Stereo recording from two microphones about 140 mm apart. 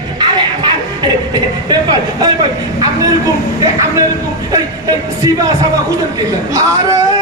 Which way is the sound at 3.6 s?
25° right (ahead or behind).